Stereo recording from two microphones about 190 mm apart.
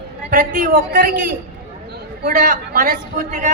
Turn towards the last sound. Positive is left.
turn(degrees=-45)  # may be behind; listen again after turning